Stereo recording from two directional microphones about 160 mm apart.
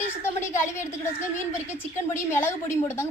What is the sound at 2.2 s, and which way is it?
Speech, 15° left (ahead or behind).